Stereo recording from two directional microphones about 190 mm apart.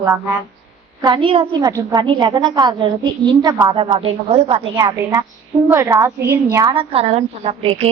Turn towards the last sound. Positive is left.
turn(degrees=-30)  # may be behind; listen again after turning